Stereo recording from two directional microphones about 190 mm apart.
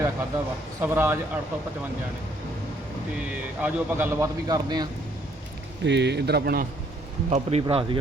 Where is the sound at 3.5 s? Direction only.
10° right (ahead or behind).